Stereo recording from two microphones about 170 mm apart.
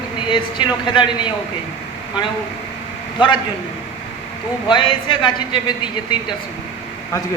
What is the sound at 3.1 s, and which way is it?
Speech, 25° left (ahead or behind).